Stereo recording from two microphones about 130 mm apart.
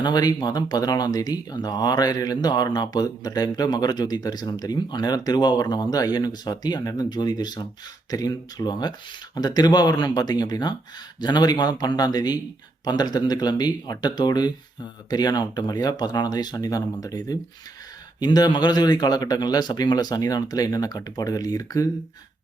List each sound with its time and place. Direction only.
0.0 s speech: 30° left (ahead or behind)